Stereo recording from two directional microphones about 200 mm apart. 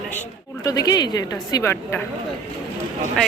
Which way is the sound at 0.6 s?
20° left (ahead or behind).